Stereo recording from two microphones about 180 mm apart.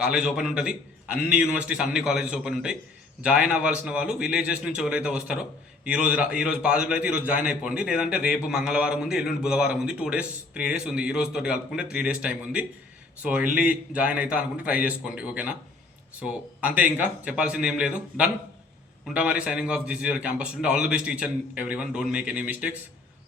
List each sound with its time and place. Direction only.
0.0 s a man's voice: 5° right (ahead or behind)
13.9 s a man's voice: 5° right (ahead or behind)